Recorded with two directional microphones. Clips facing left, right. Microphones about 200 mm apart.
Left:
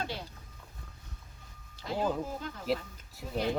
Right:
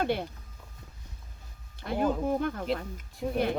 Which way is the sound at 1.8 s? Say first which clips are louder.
Right 4 dB; 60° right (ahead or behind).